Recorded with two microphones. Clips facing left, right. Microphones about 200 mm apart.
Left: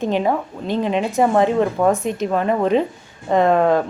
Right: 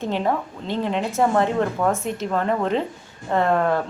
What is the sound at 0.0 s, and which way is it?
Speech, 15° left (ahead or behind).